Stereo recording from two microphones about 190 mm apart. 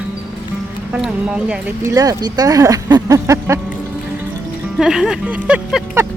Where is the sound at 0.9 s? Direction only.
5° right (ahead or behind).